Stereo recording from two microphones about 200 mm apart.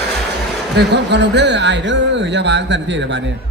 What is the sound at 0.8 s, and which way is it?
Speech, 55° right (ahead or behind).